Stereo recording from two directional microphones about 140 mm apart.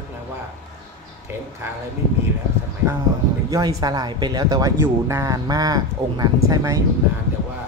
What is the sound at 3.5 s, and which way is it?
Speech, 25° right (ahead or behind).